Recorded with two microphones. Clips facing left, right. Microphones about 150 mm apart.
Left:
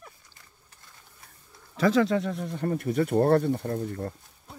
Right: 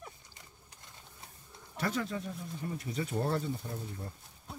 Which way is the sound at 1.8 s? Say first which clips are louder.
Left 12 dB; 90° left.